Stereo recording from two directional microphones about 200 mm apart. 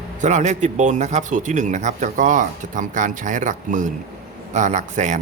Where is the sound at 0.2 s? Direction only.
35° right (ahead or behind).